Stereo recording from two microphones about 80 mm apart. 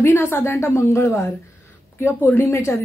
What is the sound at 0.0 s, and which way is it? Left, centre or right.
A woman's voice, left.